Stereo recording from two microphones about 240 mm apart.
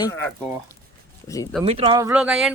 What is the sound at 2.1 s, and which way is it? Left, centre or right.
Speech, centre.